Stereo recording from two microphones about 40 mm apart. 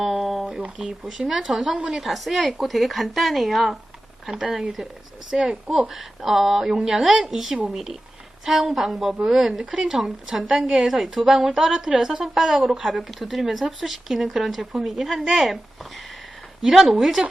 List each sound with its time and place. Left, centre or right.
0.0 s a sound: centre
0.8 s speech: centre
1.7 s a woman's voice: right
2.0 s speech: centre
4.8 s a woman's voice: centre
5.9 s speech: centre